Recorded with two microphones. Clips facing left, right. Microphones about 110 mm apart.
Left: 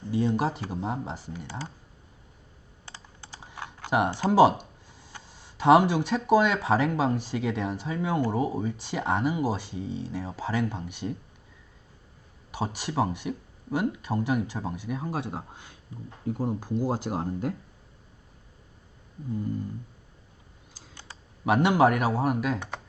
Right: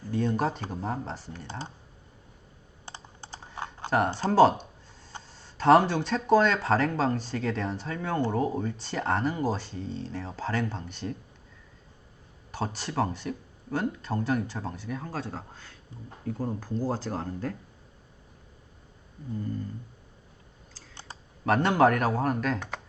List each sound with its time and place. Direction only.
0.1 s speech: 10° left (ahead or behind)
2.8 s computer keyboard: 20° right (ahead or behind)
3.8 s speech: 15° left (ahead or behind)
12.5 s speech: 10° left (ahead or behind)
19.3 s speech: 10° left (ahead or behind)
21.4 s speech: 10° left (ahead or behind)